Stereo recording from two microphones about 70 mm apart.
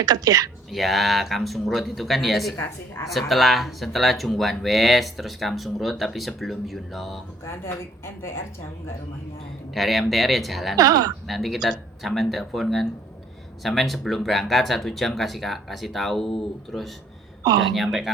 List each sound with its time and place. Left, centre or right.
0.0 s speech: right
0.7 s speech: centre
7.4 s a woman's voice: left
9.7 s speech: centre
10.8 s speech: right
11.3 s speech: centre
17.4 s a woman's voice: right
17.7 s speech: centre